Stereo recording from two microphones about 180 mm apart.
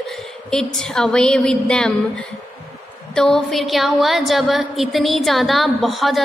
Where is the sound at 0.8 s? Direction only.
Centre (ahead or behind).